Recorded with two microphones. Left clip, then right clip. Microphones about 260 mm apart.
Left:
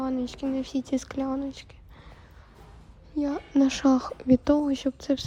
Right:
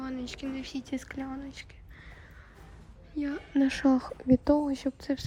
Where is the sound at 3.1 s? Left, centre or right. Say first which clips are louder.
Left 5 dB; centre.